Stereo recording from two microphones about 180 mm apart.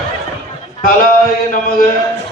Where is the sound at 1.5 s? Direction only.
50° left (ahead or behind).